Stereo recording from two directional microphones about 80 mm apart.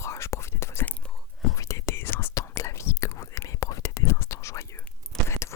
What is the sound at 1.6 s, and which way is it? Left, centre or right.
Whispering, left.